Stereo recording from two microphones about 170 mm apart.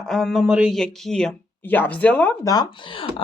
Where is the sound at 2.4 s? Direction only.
25° left (ahead or behind).